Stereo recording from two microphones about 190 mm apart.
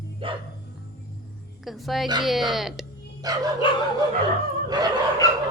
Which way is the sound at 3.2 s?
20° right (ahead or behind).